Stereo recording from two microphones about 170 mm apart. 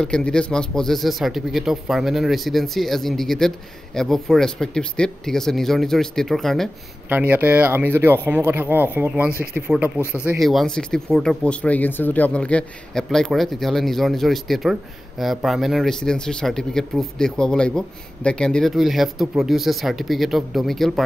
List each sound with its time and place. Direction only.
0.0 s a man's voice: 5° left (ahead or behind)
7.1 s speech: 10° right (ahead or behind)
9.3 s speech: 60° right (ahead or behind)
9.6 s speech: 10° right (ahead or behind)
10.4 s a man's voice: centre (ahead or behind)